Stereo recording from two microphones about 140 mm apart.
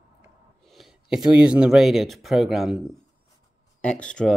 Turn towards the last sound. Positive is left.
turn(degrees=5)  # may be behind; listen again after turning